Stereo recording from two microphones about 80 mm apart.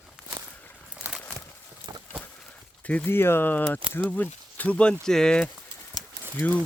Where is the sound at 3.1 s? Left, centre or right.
Left.